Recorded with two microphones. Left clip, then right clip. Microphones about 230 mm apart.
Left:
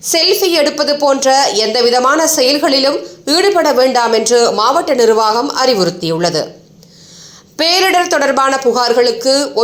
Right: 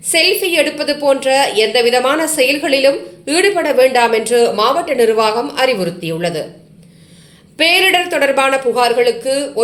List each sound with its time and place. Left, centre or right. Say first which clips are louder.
0.1 s a woman's voice: left 1 dB; centre
2.1 s a woman's voice: left 5 dB; centre
2.6 s a woman's voice: even; centre
7.5 s a woman's voice: even; centre